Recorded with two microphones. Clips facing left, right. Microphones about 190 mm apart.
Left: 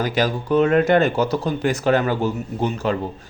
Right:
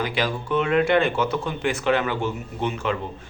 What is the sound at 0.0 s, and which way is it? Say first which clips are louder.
Speech: left 4 dB; 40° left (ahead or behind).